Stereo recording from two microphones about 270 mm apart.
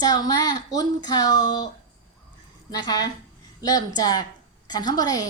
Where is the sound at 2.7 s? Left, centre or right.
Centre.